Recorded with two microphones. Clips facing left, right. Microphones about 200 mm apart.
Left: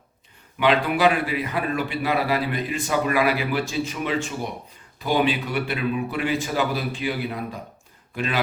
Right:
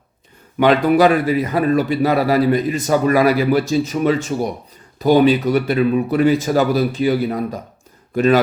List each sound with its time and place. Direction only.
0.6 s a man's voice: 45° right (ahead or behind)